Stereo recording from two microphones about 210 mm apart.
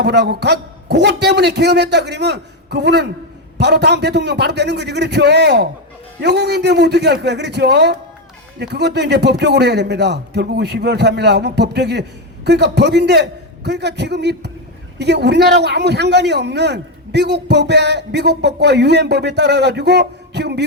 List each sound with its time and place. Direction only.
0.0 s a man's voice: 55° right (ahead or behind)